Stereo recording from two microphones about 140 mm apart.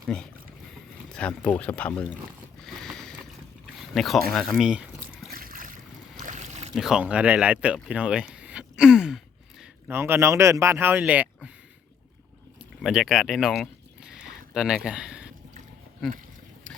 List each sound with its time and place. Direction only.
0.1 s speech: 5° left (ahead or behind)
2.6 s boat: centre (ahead or behind)
3.9 s speech: centre (ahead or behind)
5.3 s boat: 85° right
6.1 s boat: 60° right (ahead or behind)
6.7 s speech: 5° right (ahead or behind)
9.9 s speech: 15° right (ahead or behind)
12.8 s a sound: 5° right (ahead or behind)
14.8 s speech: 5° right (ahead or behind)